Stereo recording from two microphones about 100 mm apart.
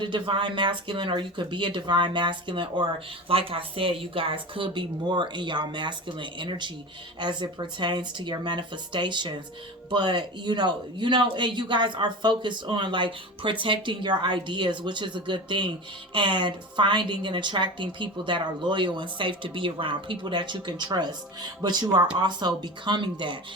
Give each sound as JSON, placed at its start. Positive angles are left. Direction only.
{"t": 0.0, "sound": "speech", "side_deg": -55}